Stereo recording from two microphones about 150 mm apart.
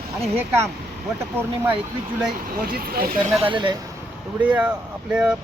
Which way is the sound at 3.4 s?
35° right (ahead or behind).